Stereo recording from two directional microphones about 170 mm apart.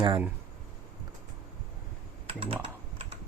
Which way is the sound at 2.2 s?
30° right (ahead or behind).